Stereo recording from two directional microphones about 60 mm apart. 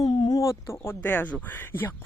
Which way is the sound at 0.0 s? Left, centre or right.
Left.